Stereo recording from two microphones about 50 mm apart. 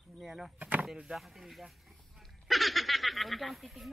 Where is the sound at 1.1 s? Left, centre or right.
Centre.